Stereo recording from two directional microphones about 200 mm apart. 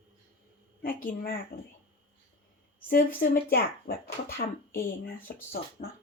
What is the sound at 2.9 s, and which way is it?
Speech, 45° left (ahead or behind).